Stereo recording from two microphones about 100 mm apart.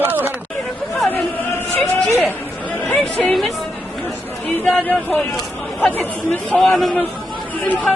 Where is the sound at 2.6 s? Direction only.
15° left (ahead or behind).